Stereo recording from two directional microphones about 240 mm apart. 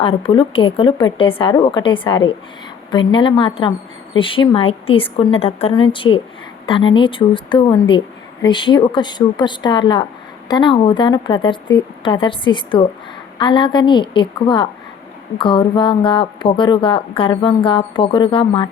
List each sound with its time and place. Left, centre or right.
0.0 s a woman's voice: left